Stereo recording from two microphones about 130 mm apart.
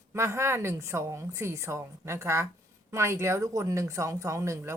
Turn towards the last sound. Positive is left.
turn(degrees=-20)  # may be behind; listen again after turning